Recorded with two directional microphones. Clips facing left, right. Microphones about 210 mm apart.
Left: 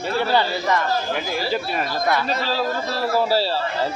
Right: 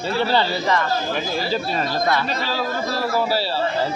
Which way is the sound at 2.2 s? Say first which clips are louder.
Left 2 dB; 35° left (ahead or behind).